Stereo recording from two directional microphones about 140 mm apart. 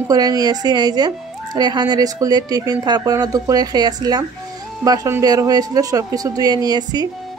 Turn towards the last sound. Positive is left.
turn(degrees=-30)  # may be behind; listen again after turning